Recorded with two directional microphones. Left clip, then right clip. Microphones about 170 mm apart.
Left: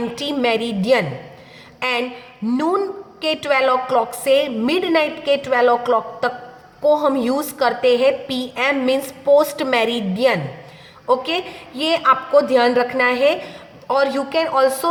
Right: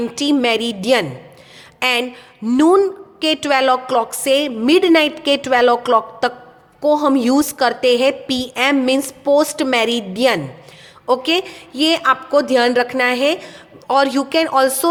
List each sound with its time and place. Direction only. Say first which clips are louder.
0.0 s a woman's voice: right 3 dB; 40° right (ahead or behind)